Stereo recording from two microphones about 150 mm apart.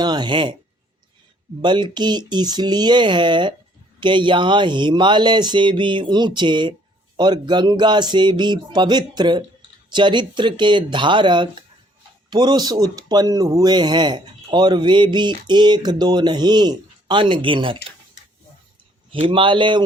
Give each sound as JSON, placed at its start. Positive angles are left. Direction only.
{"t": 0.0, "sound": "speech", "side_deg": -30}
{"t": 1.6, "sound": "speech", "side_deg": -30}
{"t": 19.1, "sound": "speech", "side_deg": -35}